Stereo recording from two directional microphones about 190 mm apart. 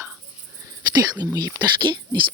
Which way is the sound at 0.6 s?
20° right (ahead or behind).